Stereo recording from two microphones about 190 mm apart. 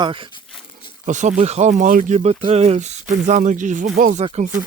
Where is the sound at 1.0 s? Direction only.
40° right (ahead or behind).